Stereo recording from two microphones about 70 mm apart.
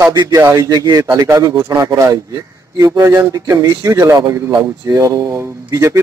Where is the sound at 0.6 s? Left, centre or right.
Right.